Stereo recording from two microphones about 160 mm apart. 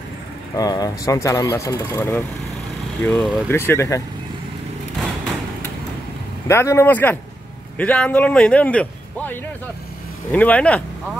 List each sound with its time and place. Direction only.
0.6 s speech: 25° left (ahead or behind)
6.4 s speech: 15° left (ahead or behind)